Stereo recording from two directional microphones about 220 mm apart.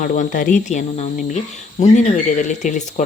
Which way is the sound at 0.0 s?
40° left (ahead or behind).